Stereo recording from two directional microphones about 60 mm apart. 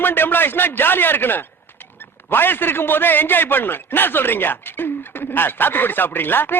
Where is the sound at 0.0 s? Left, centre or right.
Left.